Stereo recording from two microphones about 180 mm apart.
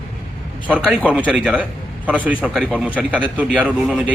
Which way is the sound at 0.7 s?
5° right (ahead or behind).